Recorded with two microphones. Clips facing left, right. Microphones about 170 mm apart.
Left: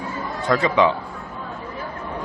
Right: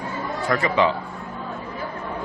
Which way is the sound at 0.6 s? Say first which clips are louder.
Left 2 dB; 15° left (ahead or behind).